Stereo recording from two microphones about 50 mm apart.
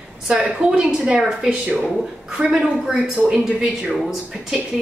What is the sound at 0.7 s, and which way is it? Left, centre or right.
A woman's voice, right.